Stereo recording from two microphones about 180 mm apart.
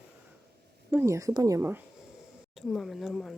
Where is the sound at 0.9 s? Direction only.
15° right (ahead or behind).